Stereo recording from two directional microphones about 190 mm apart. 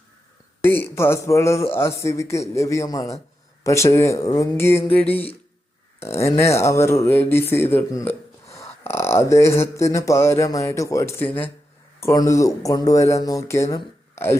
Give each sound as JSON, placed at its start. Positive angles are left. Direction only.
{"t": 0.6, "sound": "a man's voice", "side_deg": 10}